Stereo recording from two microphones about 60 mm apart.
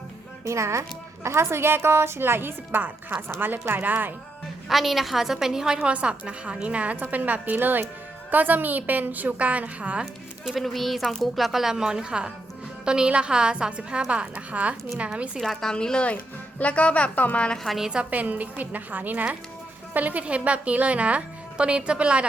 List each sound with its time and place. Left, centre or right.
0.4 s a woman's voice: right
4.7 s a woman's voice: centre; by 10.1 s right
10.4 s a woman's voice: centre
15.4 s speech: centre
15.7 s speech: centre
17.5 s speech: centre
17.7 s a woman's voice: centre
18.1 s a woman's voice: right